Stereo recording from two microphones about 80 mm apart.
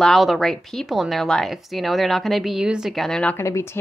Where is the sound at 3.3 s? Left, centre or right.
Left.